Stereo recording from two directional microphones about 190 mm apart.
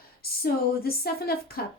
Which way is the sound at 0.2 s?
50° left (ahead or behind).